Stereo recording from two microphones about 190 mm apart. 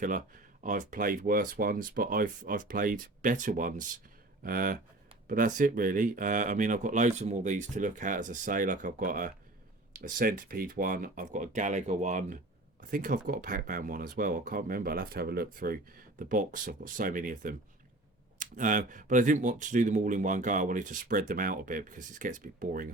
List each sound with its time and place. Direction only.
0.6 s speech: 40° right (ahead or behind)